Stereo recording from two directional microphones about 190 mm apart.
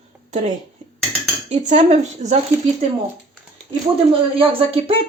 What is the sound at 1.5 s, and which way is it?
Speech, 40° right (ahead or behind).